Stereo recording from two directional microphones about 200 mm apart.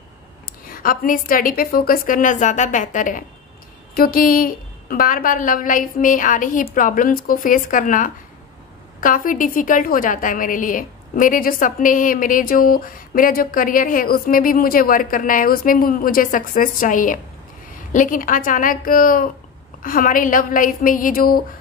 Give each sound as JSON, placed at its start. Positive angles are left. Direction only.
{"t": 0.8, "sound": "a woman's voice", "side_deg": 45}